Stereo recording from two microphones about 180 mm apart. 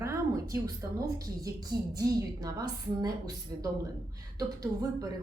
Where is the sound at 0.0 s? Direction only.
15° right (ahead or behind).